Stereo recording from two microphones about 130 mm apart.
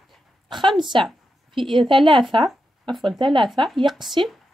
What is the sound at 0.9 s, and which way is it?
A woman's voice, 40° right (ahead or behind).